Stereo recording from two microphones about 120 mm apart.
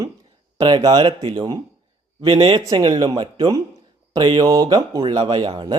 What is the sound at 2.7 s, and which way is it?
Speech, 35° right (ahead or behind).